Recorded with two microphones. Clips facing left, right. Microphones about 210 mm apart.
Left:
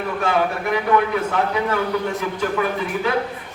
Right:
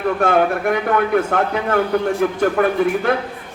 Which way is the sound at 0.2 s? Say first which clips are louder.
Right 3 dB; 55° right (ahead or behind).